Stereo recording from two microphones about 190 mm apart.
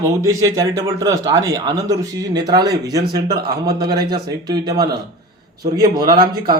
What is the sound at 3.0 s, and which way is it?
Speech, 55° right (ahead or behind).